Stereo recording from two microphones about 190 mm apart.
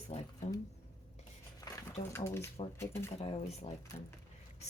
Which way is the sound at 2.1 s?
15° left (ahead or behind).